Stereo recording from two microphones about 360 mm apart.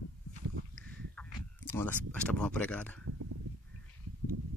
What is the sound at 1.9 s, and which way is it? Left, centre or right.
Speech, centre.